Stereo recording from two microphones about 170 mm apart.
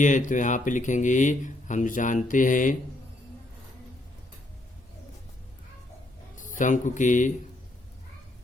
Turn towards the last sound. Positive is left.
turn(degrees=45)  # may be behind; listen again after turning